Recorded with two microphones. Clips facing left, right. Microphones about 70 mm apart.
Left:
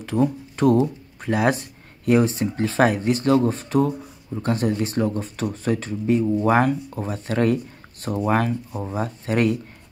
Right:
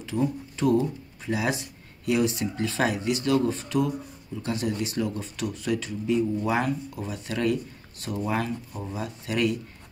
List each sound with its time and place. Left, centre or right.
0.0 s speech: left